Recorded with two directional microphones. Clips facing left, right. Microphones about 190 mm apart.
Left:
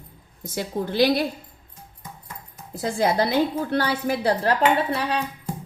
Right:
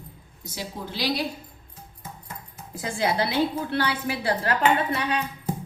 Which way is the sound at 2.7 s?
40° left (ahead or behind).